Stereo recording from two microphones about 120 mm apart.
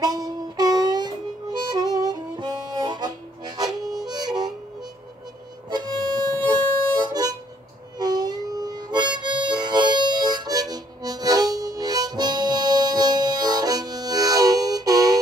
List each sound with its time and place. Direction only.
0.0 s music: 30° right (ahead or behind)
2.0 s harmonica: 35° right (ahead or behind)
5.7 s harmonica: 35° right (ahead or behind)